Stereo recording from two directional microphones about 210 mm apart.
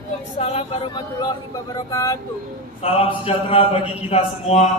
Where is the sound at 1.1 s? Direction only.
15° left (ahead or behind).